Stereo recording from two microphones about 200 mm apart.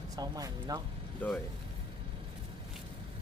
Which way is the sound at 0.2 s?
20° right (ahead or behind).